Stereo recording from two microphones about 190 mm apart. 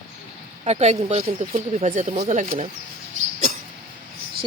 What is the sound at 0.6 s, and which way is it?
Speech, 35° right (ahead or behind).